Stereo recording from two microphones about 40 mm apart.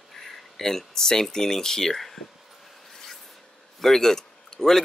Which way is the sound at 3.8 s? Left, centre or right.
Centre.